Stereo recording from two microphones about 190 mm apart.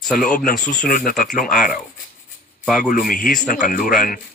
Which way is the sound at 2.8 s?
45° left (ahead or behind).